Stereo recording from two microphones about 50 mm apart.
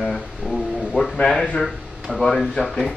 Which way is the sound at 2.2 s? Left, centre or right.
Centre.